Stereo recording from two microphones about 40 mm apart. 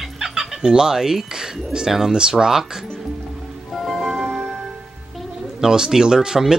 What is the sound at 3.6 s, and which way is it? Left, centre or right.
Music, centre.